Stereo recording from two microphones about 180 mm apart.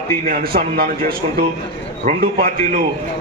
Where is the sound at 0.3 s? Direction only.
55° right (ahead or behind).